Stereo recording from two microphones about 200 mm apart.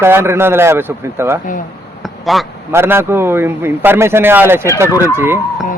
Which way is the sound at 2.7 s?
10° right (ahead or behind).